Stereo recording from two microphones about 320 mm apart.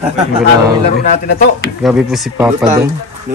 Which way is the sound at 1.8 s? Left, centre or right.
Centre.